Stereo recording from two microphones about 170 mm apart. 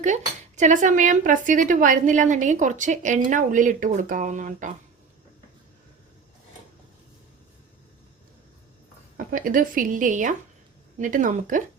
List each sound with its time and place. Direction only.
0.0 s speech: 45° right (ahead or behind)
9.1 s speech: 55° right (ahead or behind)